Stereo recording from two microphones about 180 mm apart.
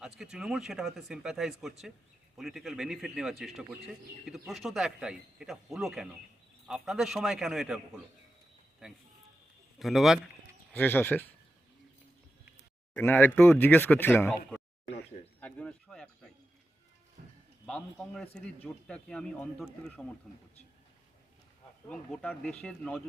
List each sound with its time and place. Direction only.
0.0 s a man's voice: 5° right (ahead or behind)
9.7 s a man's voice: centre (ahead or behind)
10.7 s speech: 10° left (ahead or behind)
12.9 s speech: 10° left (ahead or behind)
17.2 s music: 50° right (ahead or behind)
17.7 s a man's voice: 5° left (ahead or behind)
21.8 s a man's voice: 5° left (ahead or behind)